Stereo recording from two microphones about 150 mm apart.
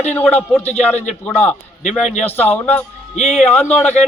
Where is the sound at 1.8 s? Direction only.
50° left (ahead or behind).